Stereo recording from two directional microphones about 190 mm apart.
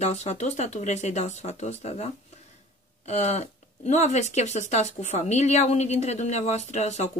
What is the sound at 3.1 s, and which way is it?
Speech, 35° left (ahead or behind).